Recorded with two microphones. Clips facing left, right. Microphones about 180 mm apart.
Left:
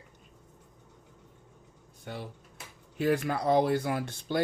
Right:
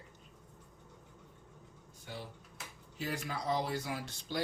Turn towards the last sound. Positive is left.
turn(degrees=55)  # may be behind; listen again after turning